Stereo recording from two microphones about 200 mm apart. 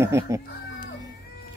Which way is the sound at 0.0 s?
15° right (ahead or behind).